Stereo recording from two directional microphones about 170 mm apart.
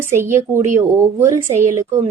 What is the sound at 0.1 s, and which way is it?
A woman's voice, 15° right (ahead or behind).